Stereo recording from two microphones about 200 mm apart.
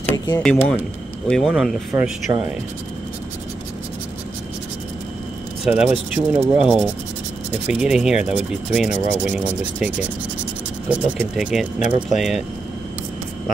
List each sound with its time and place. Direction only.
0.4 s speech: 5° left (ahead or behind)
2.3 s speech: 20° right (ahead or behind)
5.7 s speech: 5° right (ahead or behind)